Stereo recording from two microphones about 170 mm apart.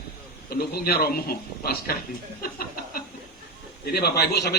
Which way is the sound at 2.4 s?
60° left (ahead or behind).